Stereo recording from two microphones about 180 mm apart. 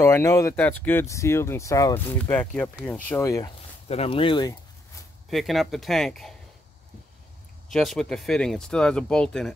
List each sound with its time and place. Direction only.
0.0 s speech: 15° left (ahead or behind)
3.1 s speech: 15° left (ahead or behind)
3.9 s speech: 30° left (ahead or behind)
5.3 s speech: centre (ahead or behind)
7.7 s speech: centre (ahead or behind)